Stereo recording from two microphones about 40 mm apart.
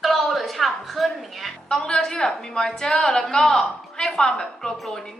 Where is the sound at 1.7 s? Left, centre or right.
Centre.